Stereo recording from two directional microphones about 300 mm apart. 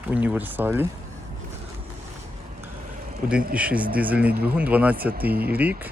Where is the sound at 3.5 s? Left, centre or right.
Centre.